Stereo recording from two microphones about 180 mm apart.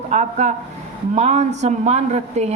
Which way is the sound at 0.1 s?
40° right (ahead or behind).